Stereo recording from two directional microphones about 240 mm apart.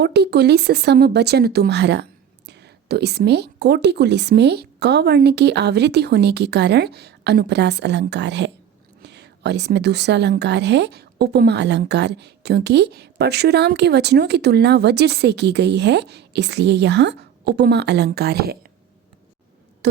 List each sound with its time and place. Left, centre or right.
0.0 s a woman's voice: right
19.8 s a woman's voice: right